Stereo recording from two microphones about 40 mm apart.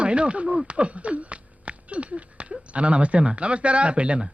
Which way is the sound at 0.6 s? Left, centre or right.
Right.